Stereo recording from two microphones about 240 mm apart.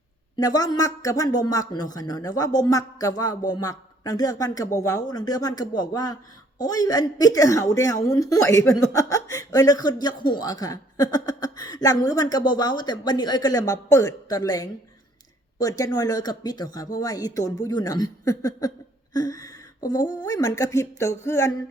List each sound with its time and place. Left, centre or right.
0.3 s speech: centre